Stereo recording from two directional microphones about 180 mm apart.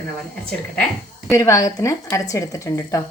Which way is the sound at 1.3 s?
15° left (ahead or behind).